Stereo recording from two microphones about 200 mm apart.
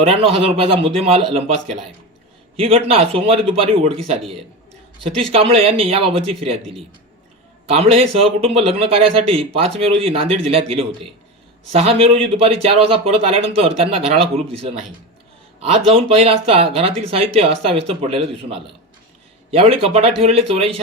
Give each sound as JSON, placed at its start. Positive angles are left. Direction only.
{"t": 0.0, "sound": "speech", "side_deg": -30}
{"t": 2.6, "sound": "speech", "side_deg": -30}
{"t": 5.3, "sound": "speech", "side_deg": -30}
{"t": 15.9, "sound": "speech", "side_deg": -30}